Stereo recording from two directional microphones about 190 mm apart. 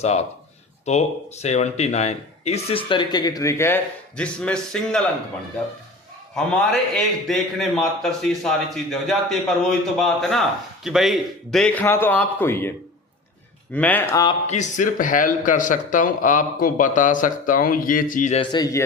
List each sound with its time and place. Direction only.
0.0 s a man's voice: 35° left (ahead or behind); by 5.0 s 5° left (ahead or behind)
6.3 s a man's voice: 5° left (ahead or behind)
13.7 s a man's voice: 10° left (ahead or behind)
14.4 s a man's voice: 40° left (ahead or behind)
18.5 s a man's voice: 20° left (ahead or behind)